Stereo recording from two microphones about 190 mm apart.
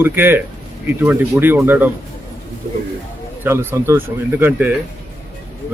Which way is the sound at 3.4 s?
10° right (ahead or behind).